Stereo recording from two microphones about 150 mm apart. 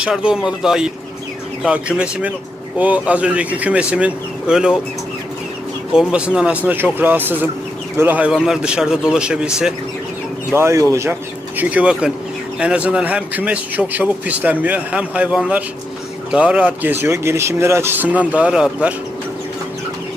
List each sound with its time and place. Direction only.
0.0 s a man's voice: 5° right (ahead or behind)
5.9 s a man's voice: 5° right (ahead or behind)
10.5 s speech: 15° right (ahead or behind)